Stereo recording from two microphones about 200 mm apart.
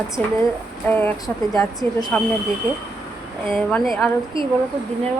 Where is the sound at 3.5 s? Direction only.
Centre (ahead or behind).